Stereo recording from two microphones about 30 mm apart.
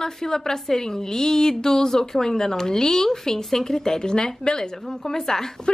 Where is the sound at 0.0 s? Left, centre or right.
Centre.